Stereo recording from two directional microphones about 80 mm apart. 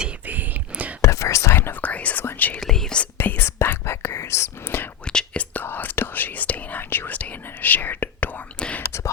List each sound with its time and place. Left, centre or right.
0.3 s whispering: right
1.0 s whispering: left
2.6 s whispering: centre
3.2 s whispering: left
5.0 s whispering: centre